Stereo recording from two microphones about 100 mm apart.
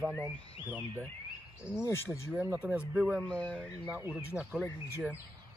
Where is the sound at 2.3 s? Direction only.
20° right (ahead or behind).